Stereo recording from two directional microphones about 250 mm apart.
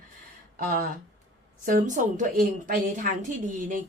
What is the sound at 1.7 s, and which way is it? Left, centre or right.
Speech, right.